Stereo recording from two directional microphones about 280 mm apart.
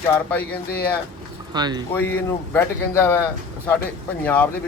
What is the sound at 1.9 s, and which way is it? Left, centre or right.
Speech, centre.